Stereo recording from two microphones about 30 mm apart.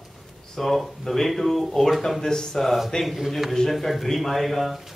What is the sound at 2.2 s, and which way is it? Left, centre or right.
Speech, centre.